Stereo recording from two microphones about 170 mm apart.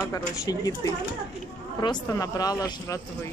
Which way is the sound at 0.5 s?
20° left (ahead or behind).